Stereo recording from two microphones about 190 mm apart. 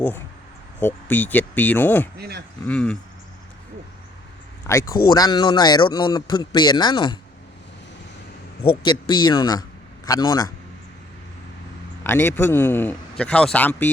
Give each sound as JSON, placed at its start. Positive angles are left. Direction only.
{"t": 0.8, "sound": "speech", "side_deg": 10}
{"t": 2.1, "sound": "speech", "side_deg": -55}
{"t": 2.6, "sound": "speech", "side_deg": 5}
{"t": 4.6, "sound": "speech", "side_deg": 15}
{"t": 8.6, "sound": "speech", "side_deg": 25}
{"t": 12.0, "sound": "speech", "side_deg": 10}